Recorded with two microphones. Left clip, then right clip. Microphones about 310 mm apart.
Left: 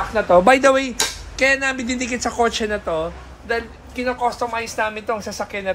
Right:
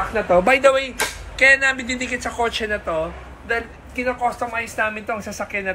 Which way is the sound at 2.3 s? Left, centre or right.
Left.